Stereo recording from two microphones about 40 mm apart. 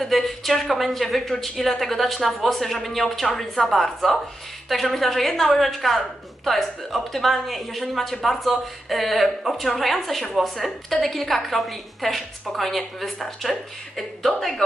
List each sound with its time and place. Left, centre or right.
0.0 s speech: centre